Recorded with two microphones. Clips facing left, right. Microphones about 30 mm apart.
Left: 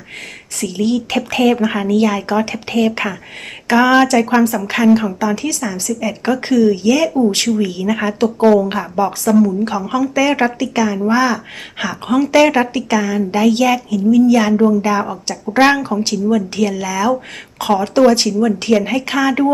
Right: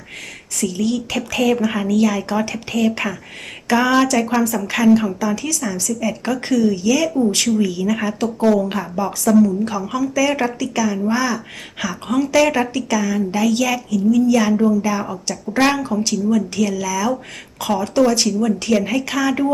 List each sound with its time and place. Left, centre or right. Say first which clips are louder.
0.6 s speech: left 3 dB; left